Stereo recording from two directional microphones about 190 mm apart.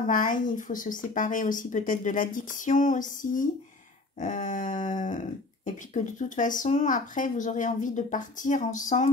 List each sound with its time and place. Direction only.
0.0 s speech: 45° left (ahead or behind)